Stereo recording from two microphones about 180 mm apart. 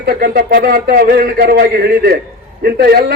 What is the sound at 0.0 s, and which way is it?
A man's voice, 60° right (ahead or behind).